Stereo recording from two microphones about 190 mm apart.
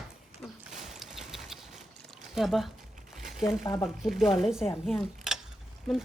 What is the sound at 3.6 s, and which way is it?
Speech, 15° left (ahead or behind).